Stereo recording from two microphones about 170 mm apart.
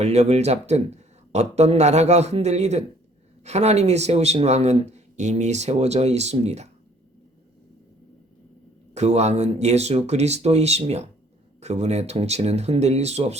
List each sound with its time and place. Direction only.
0.0 s speech: 40° right (ahead or behind)
9.0 s speech: 40° right (ahead or behind)